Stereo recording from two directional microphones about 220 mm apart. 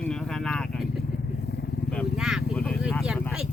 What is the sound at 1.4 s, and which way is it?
Vehicle, 50° left (ahead or behind).